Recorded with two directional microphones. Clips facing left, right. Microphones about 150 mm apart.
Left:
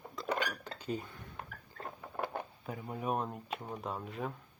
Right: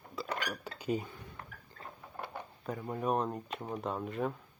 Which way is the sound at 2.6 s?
5° left (ahead or behind).